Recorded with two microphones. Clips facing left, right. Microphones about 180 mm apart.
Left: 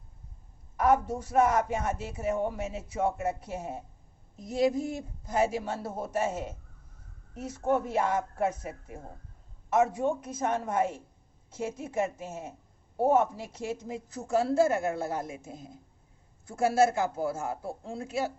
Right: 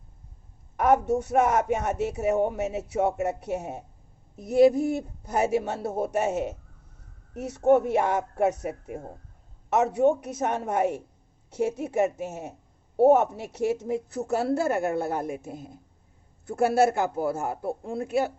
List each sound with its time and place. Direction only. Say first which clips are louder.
1.0 s a woman's voice: right 3 dB; 70° right (ahead or behind)